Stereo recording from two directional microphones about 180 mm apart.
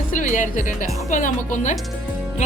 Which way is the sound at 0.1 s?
45° left (ahead or behind).